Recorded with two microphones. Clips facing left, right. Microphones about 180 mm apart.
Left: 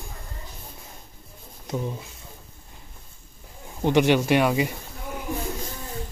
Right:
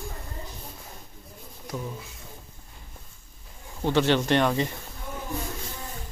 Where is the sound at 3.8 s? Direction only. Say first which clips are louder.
Left 3 dB; 15° left (ahead or behind).